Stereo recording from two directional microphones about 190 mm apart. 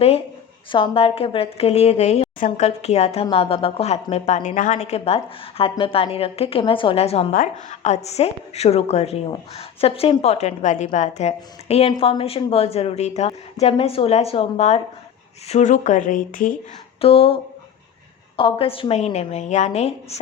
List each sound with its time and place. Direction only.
0.7 s a woman's voice: 25° left (ahead or behind); by 16.5 s 45° left (ahead or behind)
17.0 s a woman's voice: 30° left (ahead or behind)